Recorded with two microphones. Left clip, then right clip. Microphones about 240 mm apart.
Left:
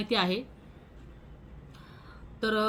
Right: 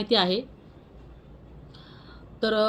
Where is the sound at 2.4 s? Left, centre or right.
Centre.